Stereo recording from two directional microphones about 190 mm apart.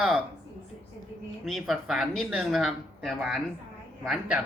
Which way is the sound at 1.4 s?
Centre (ahead or behind).